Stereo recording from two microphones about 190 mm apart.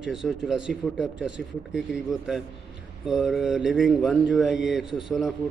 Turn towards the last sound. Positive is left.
turn(degrees=0)  # may be behind; listen again after turning